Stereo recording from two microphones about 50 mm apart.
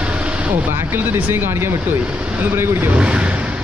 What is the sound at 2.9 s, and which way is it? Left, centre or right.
Speech, right.